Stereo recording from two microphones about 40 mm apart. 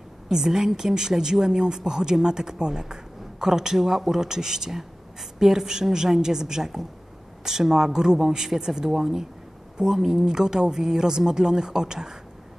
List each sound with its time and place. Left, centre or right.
0.3 s speech: centre